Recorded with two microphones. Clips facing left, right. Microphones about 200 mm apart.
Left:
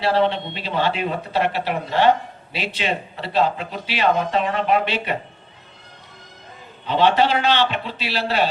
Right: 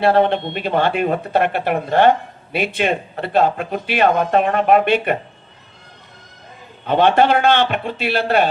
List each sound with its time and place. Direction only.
0.0 s speech: 50° right (ahead or behind)
6.8 s speech: 55° right (ahead or behind)